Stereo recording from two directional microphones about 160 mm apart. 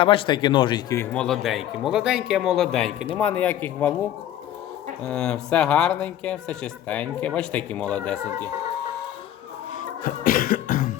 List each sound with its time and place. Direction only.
0.0 s speech: 35° left (ahead or behind)
0.9 s speech: 5° left (ahead or behind)
5.0 s speech: 5° left (ahead or behind)
10.0 s cough: 60° left (ahead or behind)